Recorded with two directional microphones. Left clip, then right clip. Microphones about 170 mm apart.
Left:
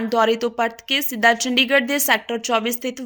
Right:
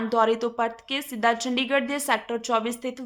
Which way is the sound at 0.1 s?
15° left (ahead or behind).